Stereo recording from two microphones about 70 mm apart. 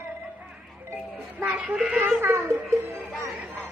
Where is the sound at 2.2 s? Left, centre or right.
Right.